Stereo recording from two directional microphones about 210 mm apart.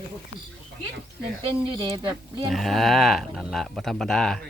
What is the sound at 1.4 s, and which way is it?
Speech, 25° right (ahead or behind).